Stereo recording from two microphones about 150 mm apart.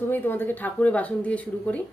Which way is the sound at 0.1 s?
15° left (ahead or behind).